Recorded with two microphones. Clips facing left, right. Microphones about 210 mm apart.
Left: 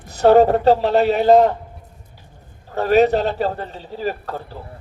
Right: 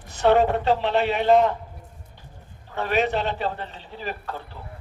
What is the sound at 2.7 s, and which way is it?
A man's voice, 40° left (ahead or behind).